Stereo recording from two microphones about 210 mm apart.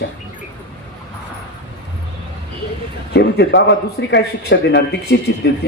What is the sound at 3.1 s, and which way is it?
A man's voice, 55° left (ahead or behind).